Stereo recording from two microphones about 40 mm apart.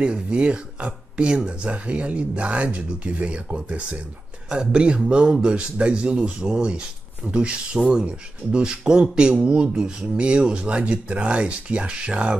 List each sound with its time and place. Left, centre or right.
0.0 s speech: right
4.5 s speech: right